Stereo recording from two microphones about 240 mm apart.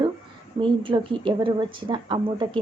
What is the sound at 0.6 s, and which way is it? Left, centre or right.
A woman's voice, right.